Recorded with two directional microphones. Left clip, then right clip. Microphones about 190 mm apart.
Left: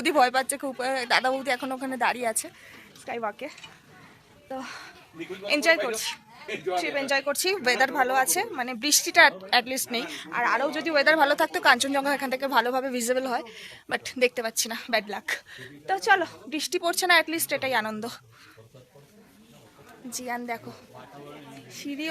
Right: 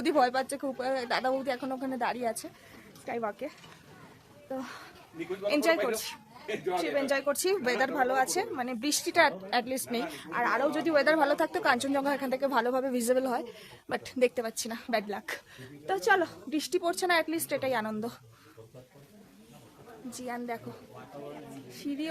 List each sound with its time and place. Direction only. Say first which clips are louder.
0.0 s speech: left 5 dB; 15° left (ahead or behind)
3.1 s a woman's voice: left 2 dB; 5° right (ahead or behind)
20.1 s a woman's voice: left 5 dB; 20° left (ahead or behind)